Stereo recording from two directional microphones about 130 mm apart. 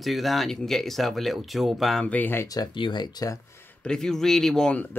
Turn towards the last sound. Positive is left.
turn(degrees=5)  # may be behind; listen again after turning